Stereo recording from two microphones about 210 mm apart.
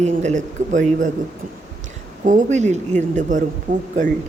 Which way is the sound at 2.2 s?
35° right (ahead or behind).